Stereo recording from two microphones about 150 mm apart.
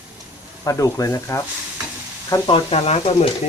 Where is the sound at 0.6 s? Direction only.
20° left (ahead or behind).